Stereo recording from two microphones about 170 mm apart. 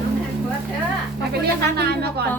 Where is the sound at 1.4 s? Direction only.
70° right (ahead or behind).